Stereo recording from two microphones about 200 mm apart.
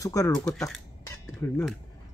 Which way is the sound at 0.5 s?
5° left (ahead or behind).